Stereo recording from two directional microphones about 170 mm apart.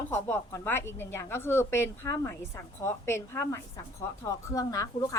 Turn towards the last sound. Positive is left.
turn(degrees=20)  # may be behind; listen again after turning